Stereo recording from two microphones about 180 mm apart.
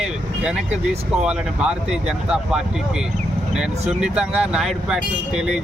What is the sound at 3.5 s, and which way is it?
Speech, 5° right (ahead or behind).